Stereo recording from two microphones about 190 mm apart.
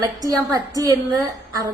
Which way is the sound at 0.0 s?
20° right (ahead or behind).